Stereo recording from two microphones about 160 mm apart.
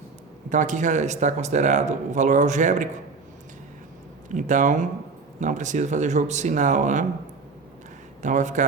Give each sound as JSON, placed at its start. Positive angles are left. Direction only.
{"t": 0.5, "sound": "speech", "side_deg": -50}
{"t": 4.4, "sound": "speech", "side_deg": -50}
{"t": 8.2, "sound": "speech", "side_deg": -50}